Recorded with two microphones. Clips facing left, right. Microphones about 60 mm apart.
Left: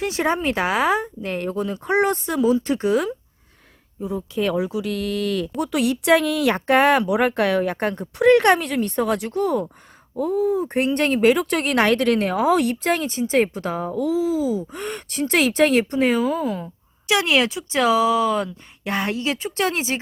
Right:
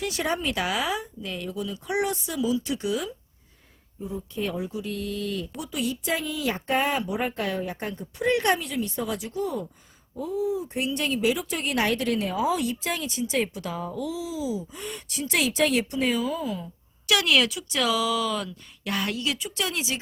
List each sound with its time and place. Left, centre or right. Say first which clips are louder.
0.0 s speech: left 6 dB; left
4.0 s speech: left 7 dB; left
5.5 s speech: left 9 dB; left
17.1 s speech: left 3 dB; left